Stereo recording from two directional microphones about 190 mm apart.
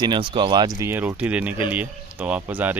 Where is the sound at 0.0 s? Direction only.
25° right (ahead or behind).